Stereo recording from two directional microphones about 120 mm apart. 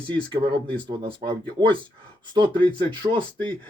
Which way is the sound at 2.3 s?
40° right (ahead or behind).